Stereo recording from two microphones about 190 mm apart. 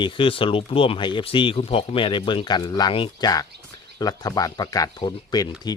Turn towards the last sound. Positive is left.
turn(degrees=20)  # may be behind; listen again after turning